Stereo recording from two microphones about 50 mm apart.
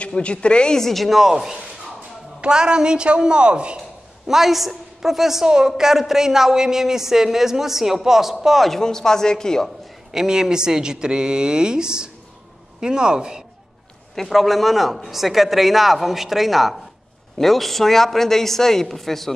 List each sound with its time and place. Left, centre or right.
0.2 s a woman's voice: left; by 3.8 s right
4.3 s a woman's voice: centre
10.1 s a woman's voice: centre
14.1 s a man's voice: centre